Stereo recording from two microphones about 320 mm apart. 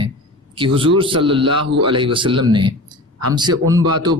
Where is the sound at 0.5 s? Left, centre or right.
Centre.